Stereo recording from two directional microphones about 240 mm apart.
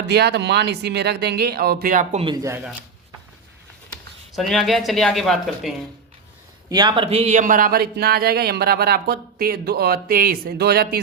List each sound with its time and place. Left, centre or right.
0.1 s speech: right
2.2 s speech: centre
4.3 s speech: centre
6.7 s a man's voice: centre; by 11.0 s right